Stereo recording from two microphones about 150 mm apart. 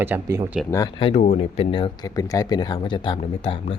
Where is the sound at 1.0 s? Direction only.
40° left (ahead or behind).